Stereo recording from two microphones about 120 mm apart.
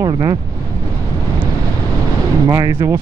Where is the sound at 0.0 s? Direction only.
30° right (ahead or behind).